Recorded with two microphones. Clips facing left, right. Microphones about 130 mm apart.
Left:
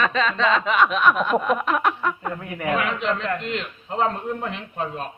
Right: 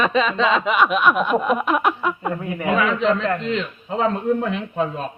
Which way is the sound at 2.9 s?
35° right (ahead or behind).